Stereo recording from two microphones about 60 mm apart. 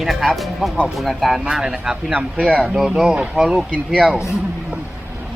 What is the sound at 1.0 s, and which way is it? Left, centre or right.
Speech, centre.